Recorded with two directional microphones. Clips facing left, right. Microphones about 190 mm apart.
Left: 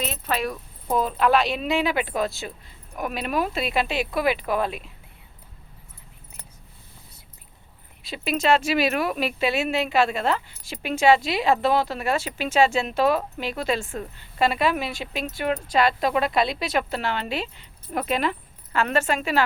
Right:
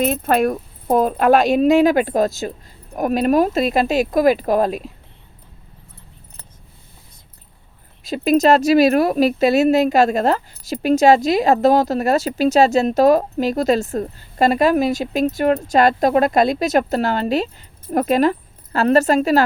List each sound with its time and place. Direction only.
0.0 s speech: 50° right (ahead or behind)
8.0 s speech: 40° right (ahead or behind)